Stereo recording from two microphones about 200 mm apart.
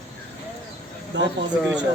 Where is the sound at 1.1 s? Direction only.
60° right (ahead or behind).